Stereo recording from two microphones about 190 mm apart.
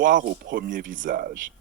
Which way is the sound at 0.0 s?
45° right (ahead or behind).